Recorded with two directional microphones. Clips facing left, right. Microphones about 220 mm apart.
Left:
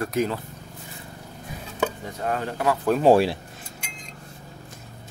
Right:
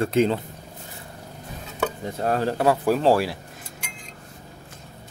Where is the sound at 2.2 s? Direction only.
35° right (ahead or behind).